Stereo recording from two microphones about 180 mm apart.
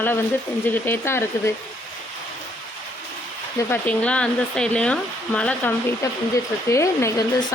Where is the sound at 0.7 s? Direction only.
15° left (ahead or behind).